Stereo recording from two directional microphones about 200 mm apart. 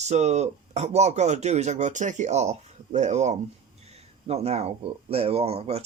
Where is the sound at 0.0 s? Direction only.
35° right (ahead or behind).